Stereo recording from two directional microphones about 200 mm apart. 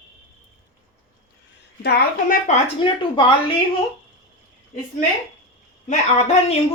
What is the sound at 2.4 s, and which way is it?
Speech, 25° left (ahead or behind).